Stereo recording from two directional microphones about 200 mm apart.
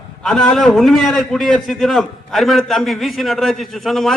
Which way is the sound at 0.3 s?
5° left (ahead or behind).